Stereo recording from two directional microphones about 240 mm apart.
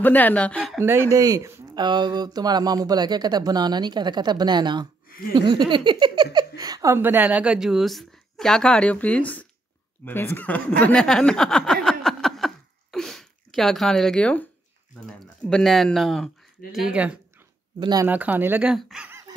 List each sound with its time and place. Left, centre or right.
0.0 s a woman's voice: centre
0.8 s speech: centre
5.3 s a sound: centre
6.3 s a woman's voice: centre
17.7 s speech: centre